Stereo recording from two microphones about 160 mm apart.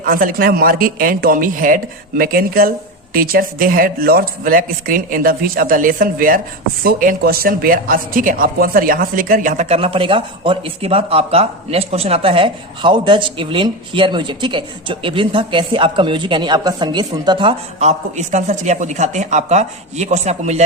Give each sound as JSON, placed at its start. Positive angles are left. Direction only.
{"t": 0.0, "sound": "a man's voice", "side_deg": -60}
{"t": 17.7, "sound": "speech", "side_deg": -45}